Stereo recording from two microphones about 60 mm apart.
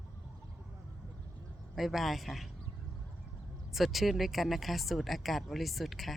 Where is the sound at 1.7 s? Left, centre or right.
Centre.